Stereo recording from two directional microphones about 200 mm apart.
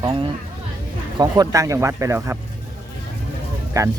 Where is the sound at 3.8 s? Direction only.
15° right (ahead or behind).